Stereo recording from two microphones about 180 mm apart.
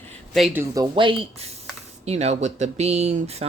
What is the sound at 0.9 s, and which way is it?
Speech, 30° right (ahead or behind).